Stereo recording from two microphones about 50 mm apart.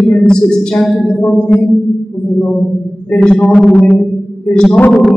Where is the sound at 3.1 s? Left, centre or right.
Left.